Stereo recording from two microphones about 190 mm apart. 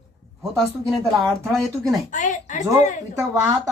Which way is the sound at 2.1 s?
40° left (ahead or behind).